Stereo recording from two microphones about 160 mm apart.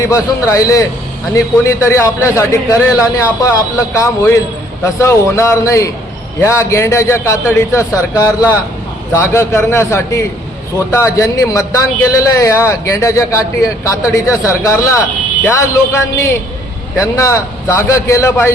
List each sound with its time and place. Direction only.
0.4 s a man's voice: 20° left (ahead or behind)